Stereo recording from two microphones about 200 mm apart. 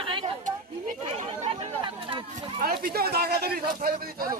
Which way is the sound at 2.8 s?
50° right (ahead or behind).